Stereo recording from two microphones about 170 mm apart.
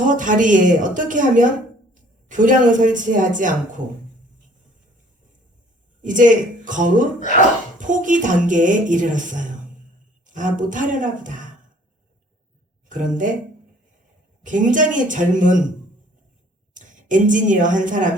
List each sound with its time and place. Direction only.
0.0 s speech: 50° right (ahead or behind)
6.0 s speech: 50° right (ahead or behind)
12.9 s speech: 50° right (ahead or behind)
14.4 s speech: 50° right (ahead or behind)
16.7 s a woman's voice: 50° right (ahead or behind)